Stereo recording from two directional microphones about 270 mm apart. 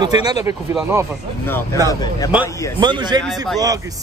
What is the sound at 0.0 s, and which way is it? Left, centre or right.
Speech, centre.